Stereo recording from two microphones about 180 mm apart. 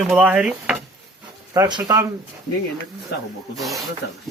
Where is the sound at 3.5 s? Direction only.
Centre (ahead or behind).